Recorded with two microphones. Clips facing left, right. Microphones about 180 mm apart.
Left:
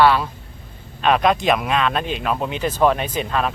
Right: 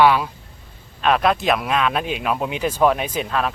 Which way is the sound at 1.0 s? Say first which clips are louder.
Left 1 dB; centre (ahead or behind).